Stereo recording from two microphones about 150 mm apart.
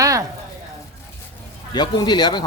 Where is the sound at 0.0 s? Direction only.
20° right (ahead or behind).